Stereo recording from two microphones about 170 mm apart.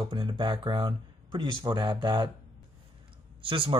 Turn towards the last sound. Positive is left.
turn(degrees=-30)  # may be behind; listen again after turning